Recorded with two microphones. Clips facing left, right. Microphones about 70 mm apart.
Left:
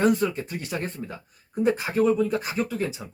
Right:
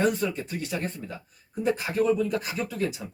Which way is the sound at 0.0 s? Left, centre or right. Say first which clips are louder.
Left 3 dB; left.